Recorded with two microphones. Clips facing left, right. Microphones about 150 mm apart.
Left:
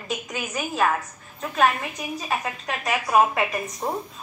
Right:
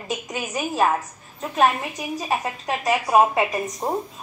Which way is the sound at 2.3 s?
20° right (ahead or behind).